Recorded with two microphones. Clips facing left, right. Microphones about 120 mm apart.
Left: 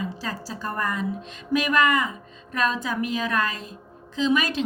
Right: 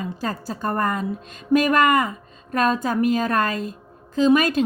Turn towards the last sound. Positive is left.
turn(degrees=-50)  # may be behind; listen again after turning